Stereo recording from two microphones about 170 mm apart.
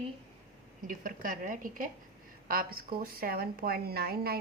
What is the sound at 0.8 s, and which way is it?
A woman's voice, 50° right (ahead or behind).